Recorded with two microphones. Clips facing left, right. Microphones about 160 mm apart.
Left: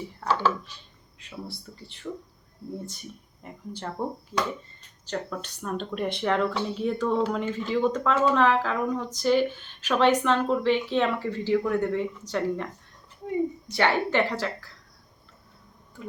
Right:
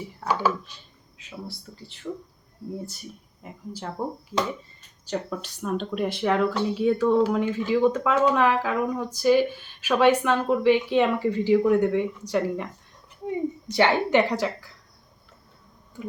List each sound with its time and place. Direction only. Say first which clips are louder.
0.3 s speech: right 1 dB; 10° right (ahead or behind)
1.2 s speech: right 1 dB; centre (ahead or behind)
3.4 s speech: right 1 dB; 5° right (ahead or behind)
5.0 s speech: right 2 dB; 5° right (ahead or behind)
13.7 s speech: right 6 dB; 20° right (ahead or behind)